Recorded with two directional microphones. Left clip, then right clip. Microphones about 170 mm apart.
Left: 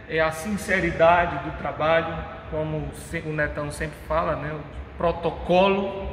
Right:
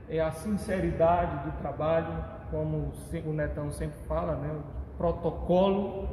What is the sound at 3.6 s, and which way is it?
Speech, 5° right (ahead or behind).